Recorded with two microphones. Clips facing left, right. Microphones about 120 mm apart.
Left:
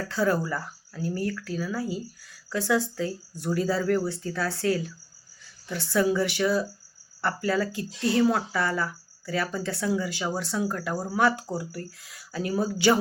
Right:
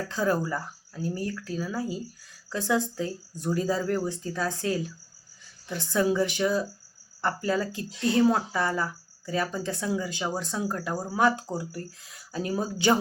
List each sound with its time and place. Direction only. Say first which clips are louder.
0.1 s speech: left 2 dB; 20° right (ahead or behind)